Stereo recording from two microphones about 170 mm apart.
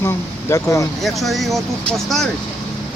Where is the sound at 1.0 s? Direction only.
Centre (ahead or behind).